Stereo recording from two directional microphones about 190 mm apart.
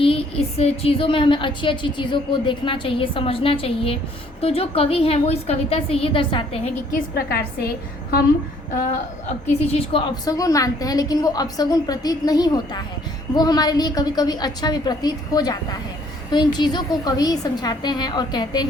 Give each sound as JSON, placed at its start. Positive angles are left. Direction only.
{"t": 0.0, "sound": "a woman's voice", "side_deg": 30}
{"t": 6.9, "sound": "a woman's voice", "side_deg": 55}
{"t": 9.5, "sound": "a woman's voice", "side_deg": 30}